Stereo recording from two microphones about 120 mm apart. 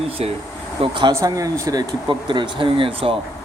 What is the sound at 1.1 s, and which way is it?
Speech, 25° right (ahead or behind).